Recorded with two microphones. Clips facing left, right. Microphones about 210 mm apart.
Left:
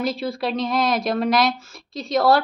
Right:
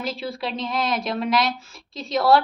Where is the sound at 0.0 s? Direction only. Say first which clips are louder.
Left 5 dB; 40° left (ahead or behind).